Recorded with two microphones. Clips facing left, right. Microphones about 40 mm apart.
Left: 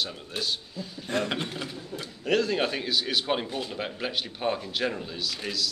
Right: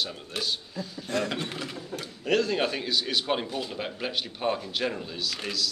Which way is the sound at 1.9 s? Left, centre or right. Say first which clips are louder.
Right 1 dB; right.